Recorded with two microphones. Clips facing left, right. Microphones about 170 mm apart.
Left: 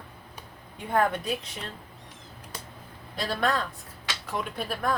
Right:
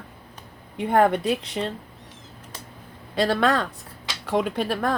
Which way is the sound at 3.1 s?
80° right.